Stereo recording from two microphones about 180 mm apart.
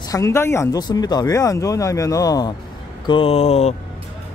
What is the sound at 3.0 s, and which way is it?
Speech, 30° left (ahead or behind).